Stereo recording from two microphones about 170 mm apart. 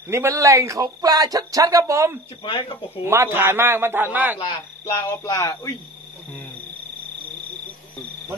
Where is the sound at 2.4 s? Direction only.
30° left (ahead or behind).